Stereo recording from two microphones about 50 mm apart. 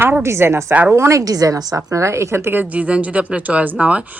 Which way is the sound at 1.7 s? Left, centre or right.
Right.